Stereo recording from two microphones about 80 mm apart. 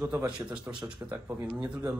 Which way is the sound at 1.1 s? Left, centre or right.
Right.